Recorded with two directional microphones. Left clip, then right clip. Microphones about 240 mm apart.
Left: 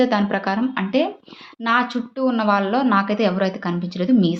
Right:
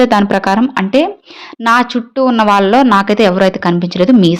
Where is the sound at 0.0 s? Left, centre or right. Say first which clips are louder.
Right 9 dB; right.